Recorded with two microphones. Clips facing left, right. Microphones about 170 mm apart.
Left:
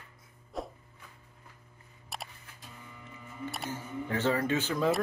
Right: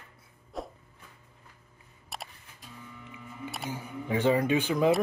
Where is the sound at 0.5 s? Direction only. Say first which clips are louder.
Even; centre (ahead or behind).